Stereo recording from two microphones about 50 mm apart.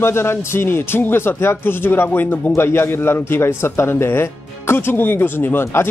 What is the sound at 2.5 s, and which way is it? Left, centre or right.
A man's voice, left.